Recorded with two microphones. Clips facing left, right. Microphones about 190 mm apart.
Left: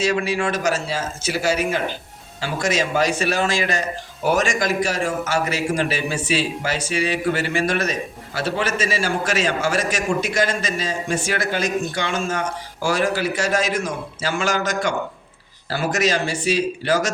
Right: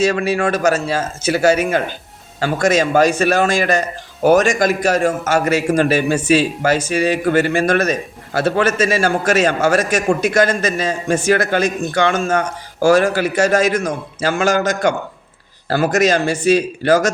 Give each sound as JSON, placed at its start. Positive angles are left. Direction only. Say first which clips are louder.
{"t": 0.0, "sound": "a man's voice", "louder": "right 5 dB", "side_deg": -50}